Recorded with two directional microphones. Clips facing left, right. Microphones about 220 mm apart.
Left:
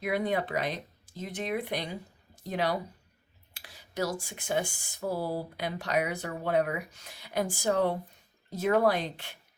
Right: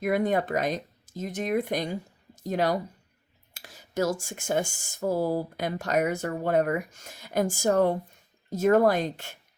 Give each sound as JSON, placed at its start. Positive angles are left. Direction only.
{"t": 0.0, "sound": "speech", "side_deg": -45}